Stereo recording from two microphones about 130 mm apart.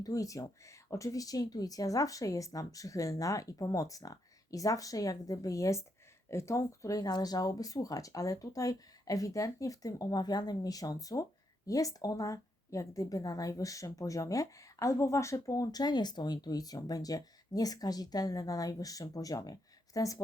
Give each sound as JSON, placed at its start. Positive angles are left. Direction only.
{"t": 0.0, "sound": "speech", "side_deg": 25}